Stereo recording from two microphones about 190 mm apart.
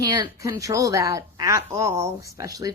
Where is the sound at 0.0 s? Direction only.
20° right (ahead or behind).